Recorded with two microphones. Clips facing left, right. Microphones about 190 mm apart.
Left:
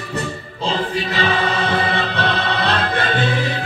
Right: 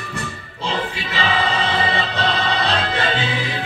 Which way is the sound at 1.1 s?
45° left (ahead or behind).